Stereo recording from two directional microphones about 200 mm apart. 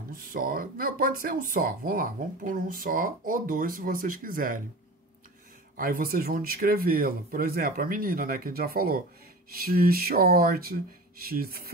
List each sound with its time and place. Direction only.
0.3 s speech: 45° right (ahead or behind)
5.8 s speech: 45° right (ahead or behind)